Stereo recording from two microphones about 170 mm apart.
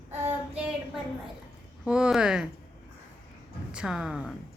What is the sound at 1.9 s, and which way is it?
Speech, 5° right (ahead or behind).